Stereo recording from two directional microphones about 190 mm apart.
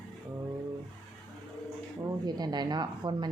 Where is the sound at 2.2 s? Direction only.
20° right (ahead or behind).